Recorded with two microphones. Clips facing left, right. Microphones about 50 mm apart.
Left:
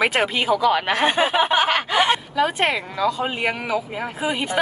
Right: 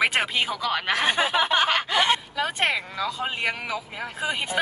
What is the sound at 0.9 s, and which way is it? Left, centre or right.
Speech, left.